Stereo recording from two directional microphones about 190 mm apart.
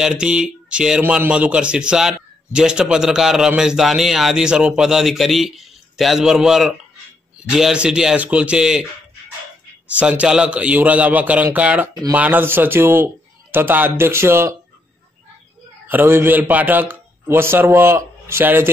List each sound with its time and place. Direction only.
0.0 s speech: 5° right (ahead or behind)
9.9 s a man's voice: 5° right (ahead or behind)
11.9 s a man's voice: 20° right (ahead or behind)
15.9 s a man's voice: 10° right (ahead or behind)